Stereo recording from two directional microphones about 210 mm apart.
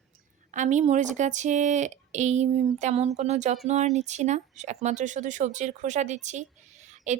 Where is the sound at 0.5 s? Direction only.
35° right (ahead or behind).